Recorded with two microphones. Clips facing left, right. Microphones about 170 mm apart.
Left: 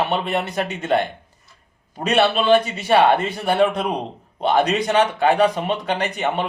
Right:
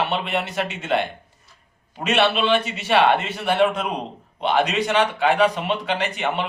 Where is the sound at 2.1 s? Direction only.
45° left (ahead or behind).